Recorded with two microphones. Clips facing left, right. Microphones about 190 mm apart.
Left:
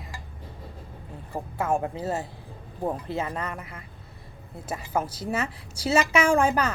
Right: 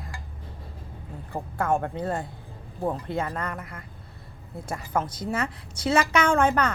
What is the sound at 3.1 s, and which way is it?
Speech, 20° left (ahead or behind).